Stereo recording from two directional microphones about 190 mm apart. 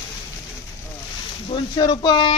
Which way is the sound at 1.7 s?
25° left (ahead or behind).